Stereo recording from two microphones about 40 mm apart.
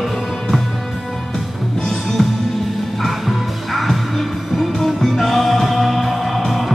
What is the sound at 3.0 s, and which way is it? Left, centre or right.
Music, centre.